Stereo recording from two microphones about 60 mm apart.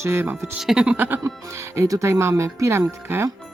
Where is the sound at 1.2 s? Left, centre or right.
Right.